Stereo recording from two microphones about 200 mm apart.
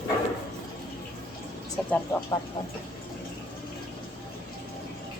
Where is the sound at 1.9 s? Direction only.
10° left (ahead or behind).